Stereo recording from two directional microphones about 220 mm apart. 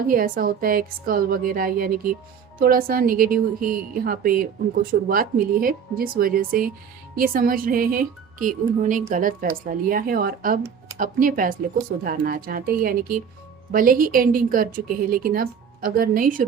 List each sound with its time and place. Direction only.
0.1 s a woman's voice: 40° right (ahead or behind)